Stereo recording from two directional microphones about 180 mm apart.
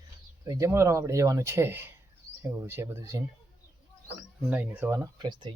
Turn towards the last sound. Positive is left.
turn(degrees=-25)  # may be behind; listen again after turning